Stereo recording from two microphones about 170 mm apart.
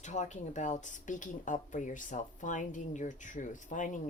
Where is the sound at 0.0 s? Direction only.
45° left (ahead or behind).